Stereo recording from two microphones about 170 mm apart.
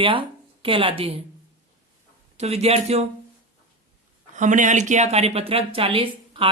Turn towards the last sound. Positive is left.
turn(degrees=-30)  # may be behind; listen again after turning